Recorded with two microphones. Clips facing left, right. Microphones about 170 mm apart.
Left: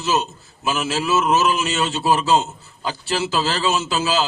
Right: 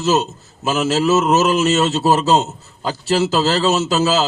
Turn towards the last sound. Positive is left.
turn(degrees=-40)  # may be behind; listen again after turning